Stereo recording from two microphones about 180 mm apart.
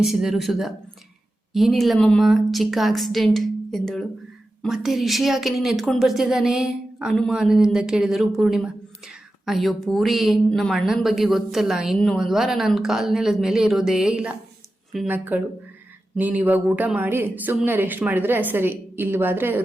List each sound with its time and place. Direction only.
0.0 s a woman's voice: centre (ahead or behind)